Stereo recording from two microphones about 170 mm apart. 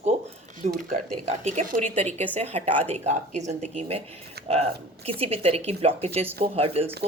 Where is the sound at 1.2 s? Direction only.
40° right (ahead or behind).